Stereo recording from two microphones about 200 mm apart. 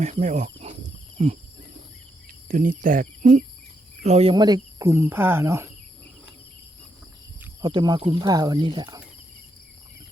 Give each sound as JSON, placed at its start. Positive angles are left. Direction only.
{"t": 0.0, "sound": "speech", "side_deg": -35}
{"t": 1.2, "sound": "a sound", "side_deg": -35}
{"t": 2.5, "sound": "speech", "side_deg": -40}
{"t": 4.0, "sound": "speech", "side_deg": -30}
{"t": 7.6, "sound": "speech", "side_deg": -20}